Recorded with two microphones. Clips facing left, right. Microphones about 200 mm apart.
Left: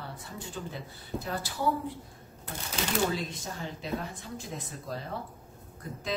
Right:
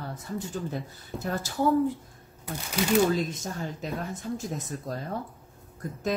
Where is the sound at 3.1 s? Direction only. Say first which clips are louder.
Right 6 dB; 45° right (ahead or behind).